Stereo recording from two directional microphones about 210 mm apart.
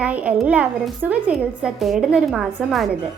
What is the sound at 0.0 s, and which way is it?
A woman's voice, 5° right (ahead or behind).